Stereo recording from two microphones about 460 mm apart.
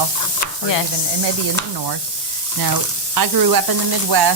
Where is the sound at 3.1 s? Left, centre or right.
Right.